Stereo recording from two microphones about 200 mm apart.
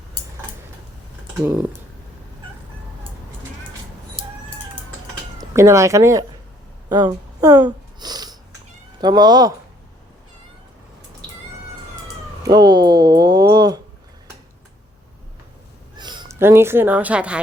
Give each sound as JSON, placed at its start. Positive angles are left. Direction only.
{"t": 5.4, "sound": "speech", "side_deg": -15}
{"t": 6.9, "sound": "a sound", "side_deg": -20}
{"t": 9.0, "sound": "speech", "side_deg": -20}
{"t": 12.4, "sound": "speech", "side_deg": -20}
{"t": 16.0, "sound": "a sound", "side_deg": -20}
{"t": 16.4, "sound": "a woman's voice", "side_deg": -10}